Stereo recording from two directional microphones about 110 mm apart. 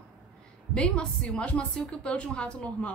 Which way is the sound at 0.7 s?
10° left (ahead or behind).